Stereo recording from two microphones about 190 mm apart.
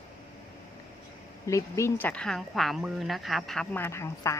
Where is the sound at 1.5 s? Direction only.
15° left (ahead or behind).